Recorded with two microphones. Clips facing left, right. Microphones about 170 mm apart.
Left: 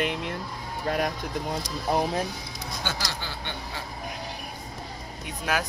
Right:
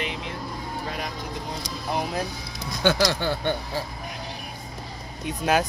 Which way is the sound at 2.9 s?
65° right (ahead or behind).